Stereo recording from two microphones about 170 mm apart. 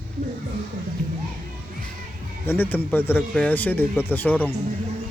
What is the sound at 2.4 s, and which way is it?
A woman's voice, 10° left (ahead or behind).